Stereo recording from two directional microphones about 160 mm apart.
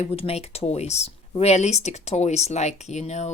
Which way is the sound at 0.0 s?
35° left (ahead or behind).